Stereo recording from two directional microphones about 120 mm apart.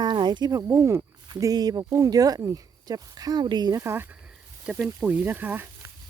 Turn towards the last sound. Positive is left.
turn(degrees=-20)  # may be behind; listen again after turning